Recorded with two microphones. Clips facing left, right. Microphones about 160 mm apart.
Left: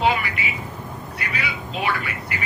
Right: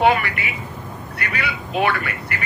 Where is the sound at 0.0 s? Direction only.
60° right (ahead or behind).